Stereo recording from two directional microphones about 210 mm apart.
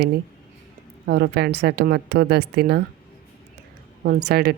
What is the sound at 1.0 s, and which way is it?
A woman's voice, 50° right (ahead or behind).